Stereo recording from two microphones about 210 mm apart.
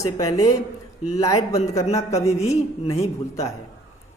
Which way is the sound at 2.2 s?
30° left (ahead or behind).